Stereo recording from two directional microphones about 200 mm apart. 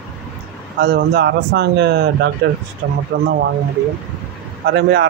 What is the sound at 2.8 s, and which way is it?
Speech, 75° right (ahead or behind).